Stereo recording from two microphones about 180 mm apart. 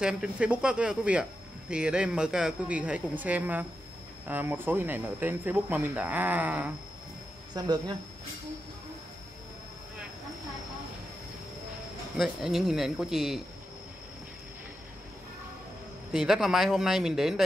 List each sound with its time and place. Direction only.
0.0 s a man's voice: 5° right (ahead or behind)
7.5 s speech: 20° right (ahead or behind)
12.2 s a man's voice: centre (ahead or behind)
16.1 s a man's voice: 5° right (ahead or behind)